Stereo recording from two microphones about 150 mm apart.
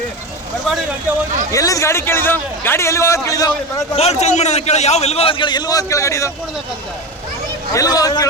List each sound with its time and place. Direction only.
1.5 s a man's voice: 20° left (ahead or behind)
3.9 s a man's voice: 45° left (ahead or behind); by 6.3 s 20° left (ahead or behind)
7.7 s a man's voice: 25° left (ahead or behind)